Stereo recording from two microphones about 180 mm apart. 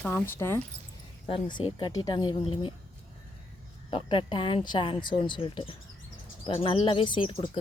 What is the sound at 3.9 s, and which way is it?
Speech, 30° left (ahead or behind).